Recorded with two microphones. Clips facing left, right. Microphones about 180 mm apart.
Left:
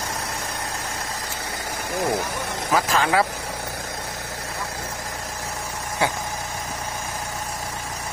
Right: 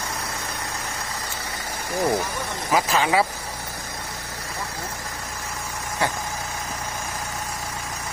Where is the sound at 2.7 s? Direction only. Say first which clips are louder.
Even; 5° right (ahead or behind).